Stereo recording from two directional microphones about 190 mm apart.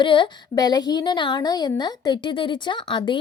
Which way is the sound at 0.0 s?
25° left (ahead or behind).